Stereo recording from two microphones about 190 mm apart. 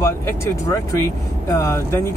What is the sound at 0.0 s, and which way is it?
Speech, 15° left (ahead or behind).